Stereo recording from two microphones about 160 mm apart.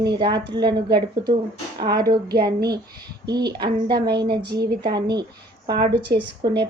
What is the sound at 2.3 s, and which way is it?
Speech, 75° right (ahead or behind).